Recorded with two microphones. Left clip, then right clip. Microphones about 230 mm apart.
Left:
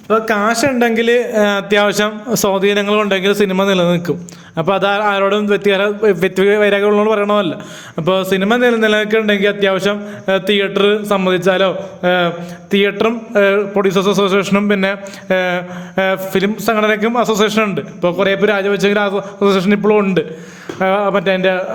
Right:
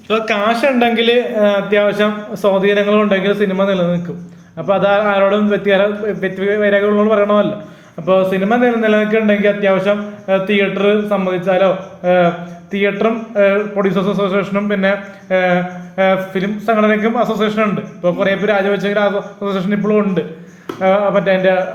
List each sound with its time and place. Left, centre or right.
0.3 s speech: left